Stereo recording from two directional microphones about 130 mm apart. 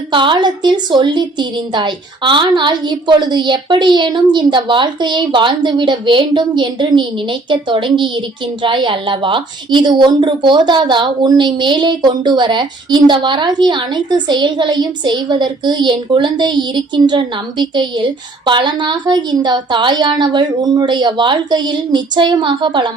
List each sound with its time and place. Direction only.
0.1 s a woman's voice: 40° right (ahead or behind)